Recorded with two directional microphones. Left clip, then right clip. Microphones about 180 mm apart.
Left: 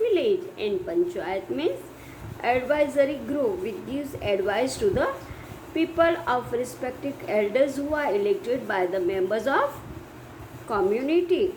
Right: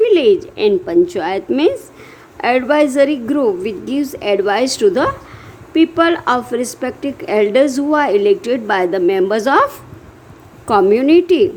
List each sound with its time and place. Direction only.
0.0 s a woman's voice: 60° right (ahead or behind)
10.7 s a woman's voice: 60° right (ahead or behind)